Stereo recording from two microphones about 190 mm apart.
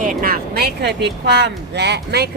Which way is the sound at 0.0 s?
45° right (ahead or behind).